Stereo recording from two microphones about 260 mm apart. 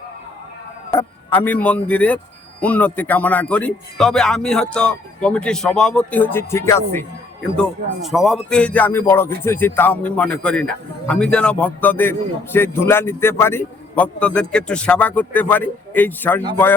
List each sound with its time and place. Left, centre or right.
0.9 s speech: centre